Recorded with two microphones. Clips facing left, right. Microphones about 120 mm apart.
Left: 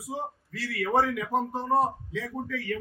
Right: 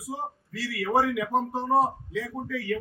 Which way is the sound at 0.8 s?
10° right (ahead or behind).